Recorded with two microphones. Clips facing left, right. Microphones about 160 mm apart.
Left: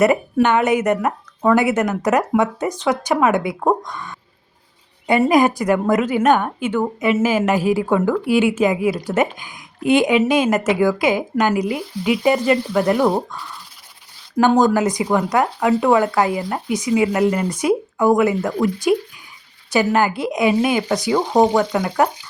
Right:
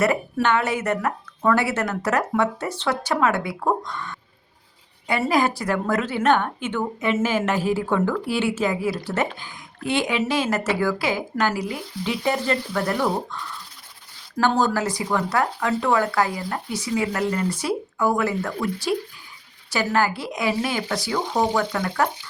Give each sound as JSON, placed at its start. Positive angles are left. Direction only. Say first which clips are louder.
{"t": 0.0, "sound": "speech", "louder": "left 6 dB", "side_deg": 20}
{"t": 14.3, "sound": "speech", "louder": "left 6 dB", "side_deg": 15}